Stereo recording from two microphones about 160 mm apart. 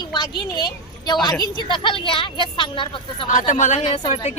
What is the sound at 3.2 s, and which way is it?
Speech, 55° left (ahead or behind).